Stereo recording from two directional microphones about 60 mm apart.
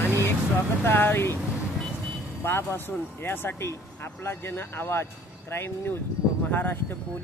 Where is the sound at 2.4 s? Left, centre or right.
Left.